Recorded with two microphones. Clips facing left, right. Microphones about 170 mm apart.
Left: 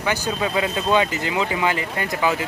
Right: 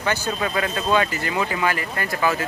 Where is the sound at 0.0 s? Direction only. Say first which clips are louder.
Left 1 dB; 15° left (ahead or behind).